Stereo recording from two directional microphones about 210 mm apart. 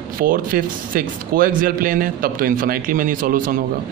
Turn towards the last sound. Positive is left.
turn(degrees=-40)  # may be behind; listen again after turning